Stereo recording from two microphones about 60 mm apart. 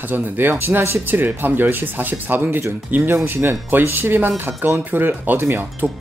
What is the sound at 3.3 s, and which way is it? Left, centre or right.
Speech, right.